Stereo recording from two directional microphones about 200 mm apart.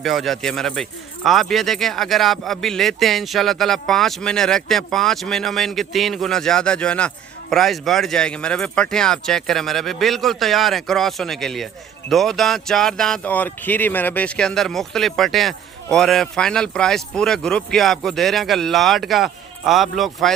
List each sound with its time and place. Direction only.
0.0 s speech: centre (ahead or behind)